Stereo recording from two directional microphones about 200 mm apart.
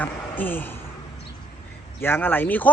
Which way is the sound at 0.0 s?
10° left (ahead or behind).